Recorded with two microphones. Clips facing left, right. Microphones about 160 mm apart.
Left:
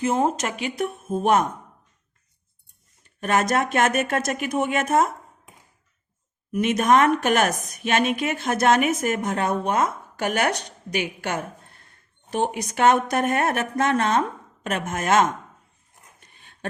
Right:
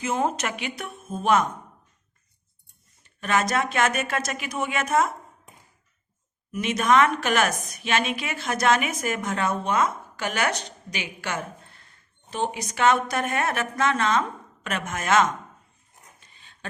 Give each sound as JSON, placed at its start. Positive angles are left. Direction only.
{"t": 0.3, "sound": "a woman's voice", "side_deg": 40}
{"t": 3.2, "sound": "a woman's voice", "side_deg": 50}
{"t": 6.5, "sound": "a woman's voice", "side_deg": 50}
{"t": 16.2, "sound": "a sound", "side_deg": 55}